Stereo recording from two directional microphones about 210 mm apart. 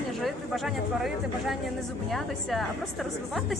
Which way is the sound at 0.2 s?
Centre (ahead or behind).